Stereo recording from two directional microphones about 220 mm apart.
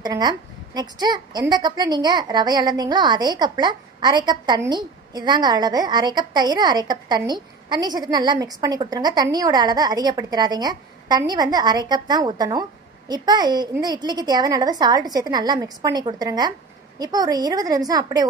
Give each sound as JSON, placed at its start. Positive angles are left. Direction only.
{"t": 0.0, "sound": "a woman's voice", "side_deg": -20}